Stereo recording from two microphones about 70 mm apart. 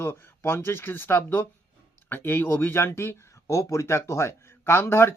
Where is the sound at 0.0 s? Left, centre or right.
Left.